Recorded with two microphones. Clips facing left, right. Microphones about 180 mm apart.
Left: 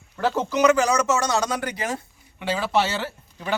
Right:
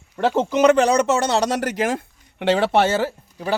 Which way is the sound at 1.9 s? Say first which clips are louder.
Right 5 dB; 60° right (ahead or behind).